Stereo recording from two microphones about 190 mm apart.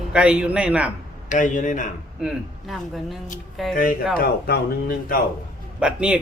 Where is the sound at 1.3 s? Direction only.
40° left (ahead or behind).